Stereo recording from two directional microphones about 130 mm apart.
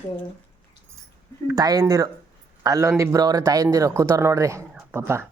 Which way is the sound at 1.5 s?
30° right (ahead or behind).